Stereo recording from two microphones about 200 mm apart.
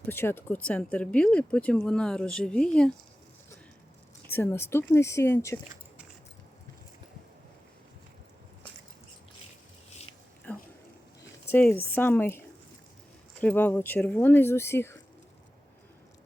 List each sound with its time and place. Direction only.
0.0 s speech: 10° left (ahead or behind)
4.3 s speech: 10° left (ahead or behind)
9.9 s a sound: 30° left (ahead or behind)
10.5 s a sound: 10° left (ahead or behind)
11.2 s speech: 10° left (ahead or behind)
13.4 s speech: 10° left (ahead or behind)